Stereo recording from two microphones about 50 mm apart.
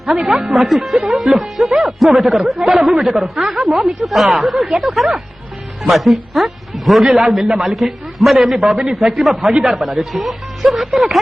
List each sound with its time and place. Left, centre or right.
0.0 s a man's voice: centre
1.1 s speech: right
1.4 s a man's voice: centre